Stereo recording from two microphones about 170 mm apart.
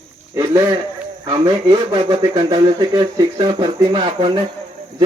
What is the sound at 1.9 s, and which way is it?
Speech, 30° right (ahead or behind).